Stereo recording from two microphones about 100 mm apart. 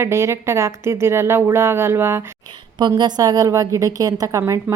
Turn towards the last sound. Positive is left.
turn(degrees=-30)  # may be behind; listen again after turning